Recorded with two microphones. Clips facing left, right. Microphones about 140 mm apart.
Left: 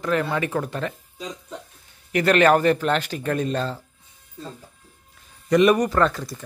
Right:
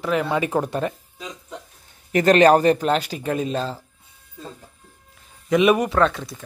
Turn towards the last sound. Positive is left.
turn(degrees=0)  # may be behind; listen again after turning